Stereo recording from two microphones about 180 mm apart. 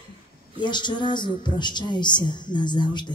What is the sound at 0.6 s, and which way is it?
A woman's voice, 25° left (ahead or behind).